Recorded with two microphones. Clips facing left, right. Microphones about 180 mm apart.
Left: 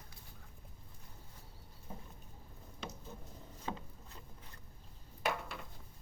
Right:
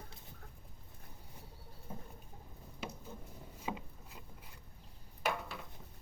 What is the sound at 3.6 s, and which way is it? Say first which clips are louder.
Rowboat: right 1 dB; 10° right (ahead or behind).